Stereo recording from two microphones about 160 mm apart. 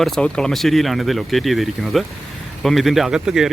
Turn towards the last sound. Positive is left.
turn(degrees=-5)  # may be behind; listen again after turning